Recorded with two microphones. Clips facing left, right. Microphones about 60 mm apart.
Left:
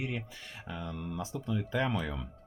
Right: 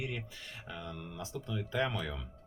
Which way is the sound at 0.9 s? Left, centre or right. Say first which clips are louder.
Left 4 dB; left.